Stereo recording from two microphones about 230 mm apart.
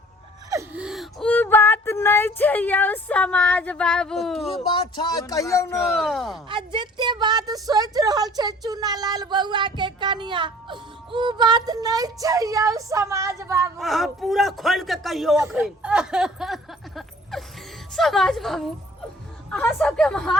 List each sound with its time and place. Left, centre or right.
0.5 s speech: centre
4.5 s speech: left
5.7 s a man's voice: centre
6.5 s a woman's voice: right
13.7 s a man's voice: centre